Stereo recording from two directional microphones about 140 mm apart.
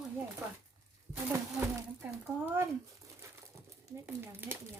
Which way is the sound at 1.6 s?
15° right (ahead or behind).